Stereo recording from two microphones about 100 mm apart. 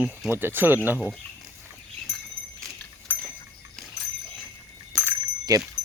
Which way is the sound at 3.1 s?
15° left (ahead or behind).